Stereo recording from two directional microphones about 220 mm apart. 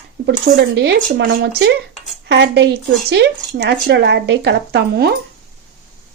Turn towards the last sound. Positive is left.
turn(degrees=-50)  # may be behind; listen again after turning